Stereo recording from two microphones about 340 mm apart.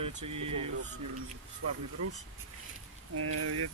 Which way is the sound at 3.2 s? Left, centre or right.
Right.